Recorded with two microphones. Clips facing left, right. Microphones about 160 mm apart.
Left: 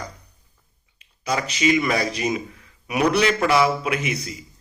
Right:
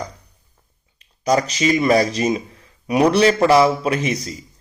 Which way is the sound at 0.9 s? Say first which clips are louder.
Right 7 dB; 40° right (ahead or behind).